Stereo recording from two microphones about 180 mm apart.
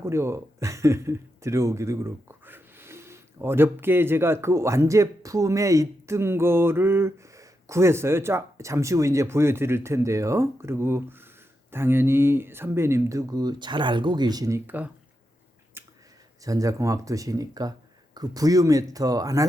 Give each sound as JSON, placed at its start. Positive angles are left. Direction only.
{"t": 0.0, "sound": "speech", "side_deg": -15}
{"t": 15.8, "sound": "a sound", "side_deg": -15}
{"t": 16.4, "sound": "speech", "side_deg": -20}